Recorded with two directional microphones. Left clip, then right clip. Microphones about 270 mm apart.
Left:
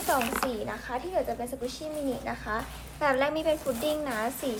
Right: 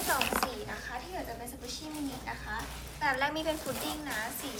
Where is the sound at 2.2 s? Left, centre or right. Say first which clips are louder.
Left 6 dB; left.